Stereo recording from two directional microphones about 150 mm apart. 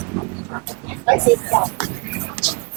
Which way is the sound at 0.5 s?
20° right (ahead or behind).